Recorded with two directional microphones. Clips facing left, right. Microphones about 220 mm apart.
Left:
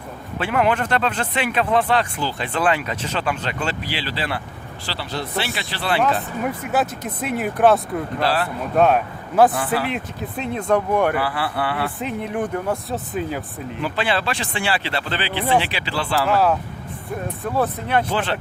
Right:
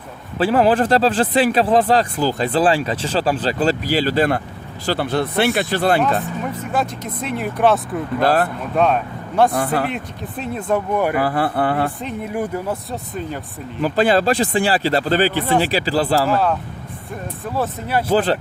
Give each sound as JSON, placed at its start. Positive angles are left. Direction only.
{"t": 0.3, "sound": "speech", "side_deg": -35}
{"t": 6.0, "sound": "speech", "side_deg": 10}
{"t": 8.2, "sound": "speech", "side_deg": -50}
{"t": 8.7, "sound": "speech", "side_deg": 5}
{"t": 9.5, "sound": "speech", "side_deg": -45}
{"t": 9.9, "sound": "speech", "side_deg": 0}
{"t": 11.1, "sound": "speech", "side_deg": -45}
{"t": 11.9, "sound": "speech", "side_deg": 0}
{"t": 13.8, "sound": "speech", "side_deg": -40}
{"t": 16.3, "sound": "speech", "side_deg": 5}
{"t": 18.1, "sound": "speech", "side_deg": -35}